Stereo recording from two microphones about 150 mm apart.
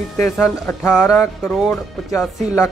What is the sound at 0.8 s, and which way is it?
Speech, 15° left (ahead or behind).